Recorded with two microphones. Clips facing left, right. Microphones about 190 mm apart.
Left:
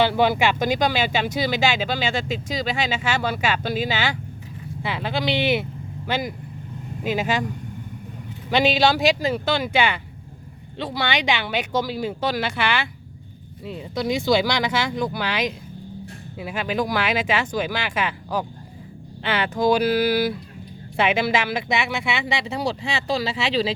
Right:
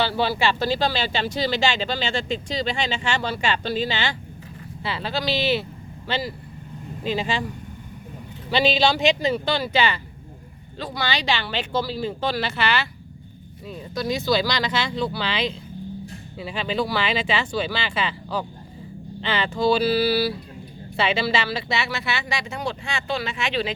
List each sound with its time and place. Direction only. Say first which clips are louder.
0.0 s speech: left 3 dB; 15° left (ahead or behind)
8.4 s speech: left 1 dB; 10° left (ahead or behind)
10.8 s speech: left 3 dB; 25° left (ahead or behind)